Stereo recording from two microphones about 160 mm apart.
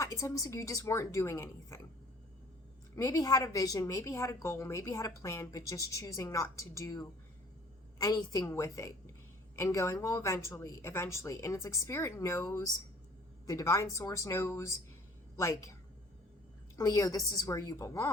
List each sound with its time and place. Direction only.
0.0 s a woman's voice: 20° left (ahead or behind)
2.9 s a woman's voice: 20° left (ahead or behind)
16.7 s a woman's voice: 20° left (ahead or behind)